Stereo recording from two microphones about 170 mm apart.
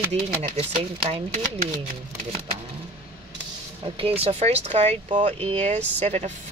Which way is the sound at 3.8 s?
35° right (ahead or behind).